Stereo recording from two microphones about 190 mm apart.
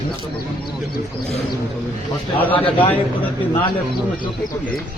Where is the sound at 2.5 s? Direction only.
30° left (ahead or behind).